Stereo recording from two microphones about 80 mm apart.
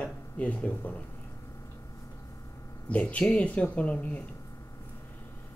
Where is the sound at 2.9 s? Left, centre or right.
Centre.